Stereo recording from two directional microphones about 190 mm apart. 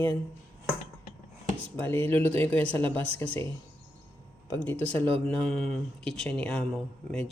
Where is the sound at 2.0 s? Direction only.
10° left (ahead or behind).